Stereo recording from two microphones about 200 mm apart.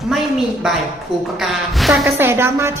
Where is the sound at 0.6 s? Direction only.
5° right (ahead or behind).